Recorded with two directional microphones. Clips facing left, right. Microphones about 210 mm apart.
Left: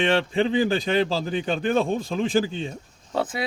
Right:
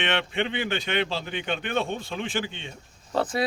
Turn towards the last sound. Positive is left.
turn(degrees=0)  # may be behind; listen again after turning